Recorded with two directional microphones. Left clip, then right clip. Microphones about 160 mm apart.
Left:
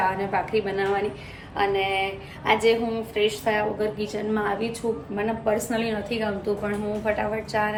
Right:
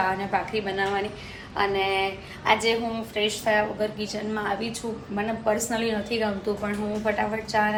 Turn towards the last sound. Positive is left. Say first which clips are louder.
# right 1 dB
turn(degrees=5)  # may be behind; listen again after turning